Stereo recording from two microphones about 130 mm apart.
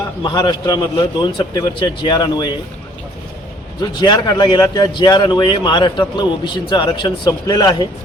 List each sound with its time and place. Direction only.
0.2 s a man's voice: 35° left (ahead or behind)
3.8 s a man's voice: 35° left (ahead or behind)